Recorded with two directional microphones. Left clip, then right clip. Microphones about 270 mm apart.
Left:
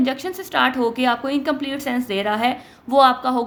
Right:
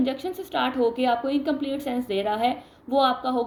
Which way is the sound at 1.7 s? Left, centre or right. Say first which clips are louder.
Left 4 dB; left.